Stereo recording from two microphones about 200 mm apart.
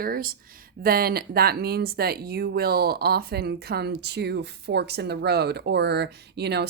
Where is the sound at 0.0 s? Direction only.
45° right (ahead or behind).